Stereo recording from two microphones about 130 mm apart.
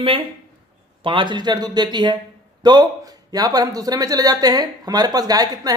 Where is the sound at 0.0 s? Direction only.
40° right (ahead or behind).